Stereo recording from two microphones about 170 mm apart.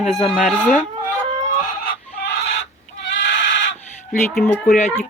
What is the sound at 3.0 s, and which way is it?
Goat, 90° left.